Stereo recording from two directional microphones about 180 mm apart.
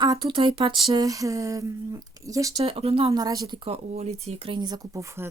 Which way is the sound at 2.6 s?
30° right (ahead or behind).